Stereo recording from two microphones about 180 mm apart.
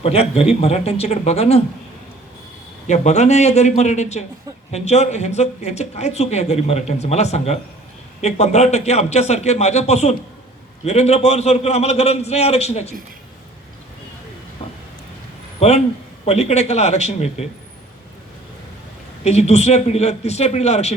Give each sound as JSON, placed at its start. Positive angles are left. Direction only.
{"t": 0.0, "sound": "speech", "side_deg": 35}
{"t": 2.8, "sound": "speech", "side_deg": 40}
{"t": 14.6, "sound": "a sound", "side_deg": 30}
{"t": 15.6, "sound": "speech", "side_deg": 40}
{"t": 19.2, "sound": "speech", "side_deg": 40}